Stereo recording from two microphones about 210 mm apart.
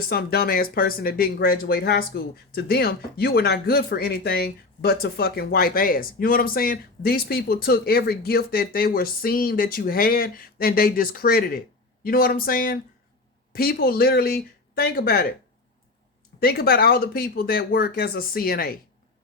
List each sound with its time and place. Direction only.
0.1 s speech: 45° left (ahead or behind)
16.4 s speech: 45° left (ahead or behind)